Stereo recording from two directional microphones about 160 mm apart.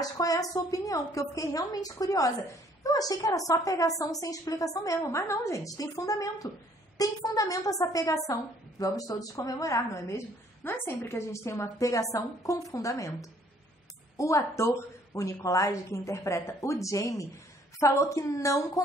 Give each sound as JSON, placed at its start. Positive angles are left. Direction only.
{"t": 0.0, "sound": "a woman's voice", "side_deg": 20}